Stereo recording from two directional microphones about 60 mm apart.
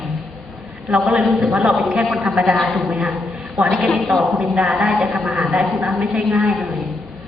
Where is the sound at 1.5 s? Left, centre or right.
Centre.